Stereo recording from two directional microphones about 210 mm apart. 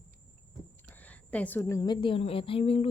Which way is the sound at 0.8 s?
10° left (ahead or behind).